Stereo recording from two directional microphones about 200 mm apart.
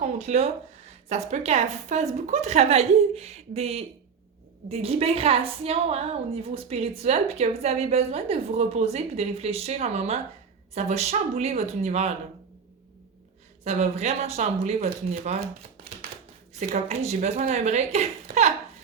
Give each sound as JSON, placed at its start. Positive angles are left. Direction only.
{"t": 0.0, "sound": "a woman's voice", "side_deg": -35}
{"t": 13.7, "sound": "a woman's voice", "side_deg": -35}
{"t": 16.6, "sound": "a woman's voice", "side_deg": -35}